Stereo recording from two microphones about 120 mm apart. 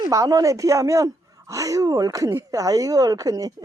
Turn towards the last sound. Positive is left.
turn(degrees=-30)  # may be behind; listen again after turning